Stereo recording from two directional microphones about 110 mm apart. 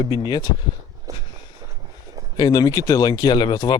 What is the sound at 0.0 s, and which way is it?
Speech, 40° left (ahead or behind).